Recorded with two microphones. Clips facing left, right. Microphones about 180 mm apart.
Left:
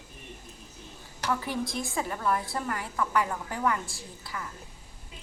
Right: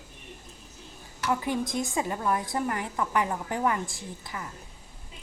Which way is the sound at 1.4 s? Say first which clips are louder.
Right 3 dB; 20° right (ahead or behind).